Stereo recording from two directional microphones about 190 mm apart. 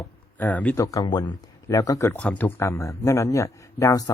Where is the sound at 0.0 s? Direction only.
10° left (ahead or behind).